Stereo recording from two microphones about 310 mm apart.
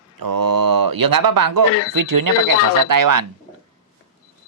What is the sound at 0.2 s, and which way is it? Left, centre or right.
Speech, right.